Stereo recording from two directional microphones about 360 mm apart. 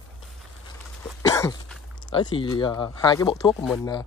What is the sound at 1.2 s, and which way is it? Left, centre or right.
Cough, centre.